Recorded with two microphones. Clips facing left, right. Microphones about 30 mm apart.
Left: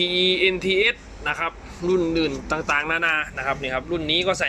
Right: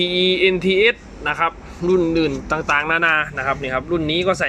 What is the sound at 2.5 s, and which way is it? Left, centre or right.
Speech, right.